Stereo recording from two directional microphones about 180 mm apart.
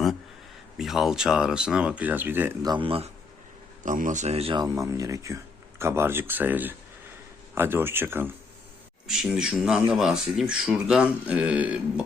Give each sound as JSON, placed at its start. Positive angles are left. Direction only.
{"t": 0.8, "sound": "speech", "side_deg": 0}
{"t": 2.6, "sound": "speech", "side_deg": -30}
{"t": 3.8, "sound": "speech", "side_deg": -45}
{"t": 9.0, "sound": "speech", "side_deg": 0}